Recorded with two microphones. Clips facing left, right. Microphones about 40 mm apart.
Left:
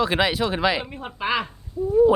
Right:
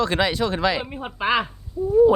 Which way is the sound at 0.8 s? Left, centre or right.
Centre.